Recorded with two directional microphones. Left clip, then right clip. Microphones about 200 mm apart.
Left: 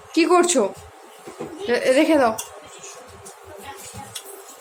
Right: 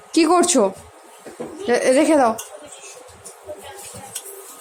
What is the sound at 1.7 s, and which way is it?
Speech, 20° right (ahead or behind).